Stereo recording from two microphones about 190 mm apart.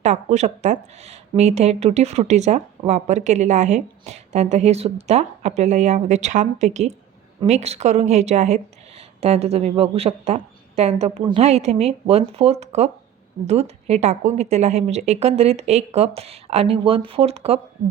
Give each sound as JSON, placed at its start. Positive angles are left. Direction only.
{"t": 0.0, "sound": "a woman's voice", "side_deg": -35}